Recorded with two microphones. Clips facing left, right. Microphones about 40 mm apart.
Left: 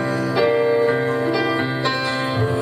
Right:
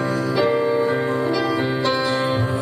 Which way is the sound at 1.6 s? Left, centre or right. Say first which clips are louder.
Right 1 dB; centre.